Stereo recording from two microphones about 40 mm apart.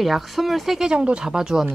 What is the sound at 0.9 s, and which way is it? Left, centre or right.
Speech, right.